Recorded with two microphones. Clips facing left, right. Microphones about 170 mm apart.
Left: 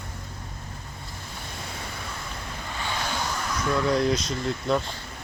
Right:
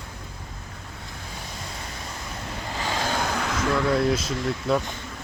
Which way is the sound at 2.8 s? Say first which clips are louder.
Right 4 dB; 45° right (ahead or behind).